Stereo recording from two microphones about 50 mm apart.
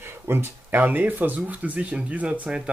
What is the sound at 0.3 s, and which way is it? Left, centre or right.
Speech, right.